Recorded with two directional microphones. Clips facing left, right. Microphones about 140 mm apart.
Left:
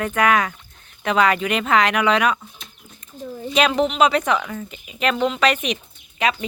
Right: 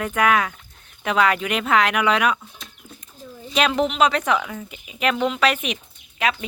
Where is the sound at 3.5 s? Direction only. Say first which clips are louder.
Left 2 dB; centre (ahead or behind).